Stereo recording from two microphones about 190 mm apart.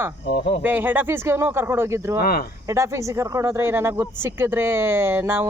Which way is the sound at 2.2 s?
50° left (ahead or behind).